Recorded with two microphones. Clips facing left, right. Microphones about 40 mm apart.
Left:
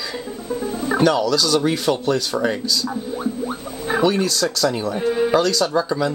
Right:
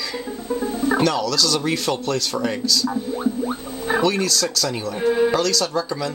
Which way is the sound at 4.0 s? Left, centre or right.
Centre.